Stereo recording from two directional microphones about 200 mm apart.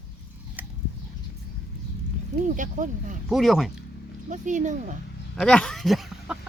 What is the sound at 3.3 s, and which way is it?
Speech, centre (ahead or behind).